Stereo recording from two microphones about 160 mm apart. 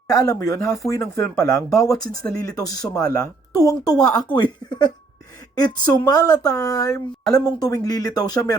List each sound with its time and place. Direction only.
0.1 s speech: 20° left (ahead or behind)